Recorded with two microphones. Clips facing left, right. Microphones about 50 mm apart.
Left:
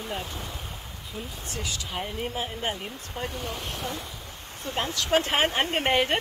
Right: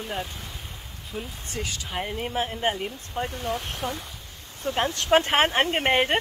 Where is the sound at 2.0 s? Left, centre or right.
Right.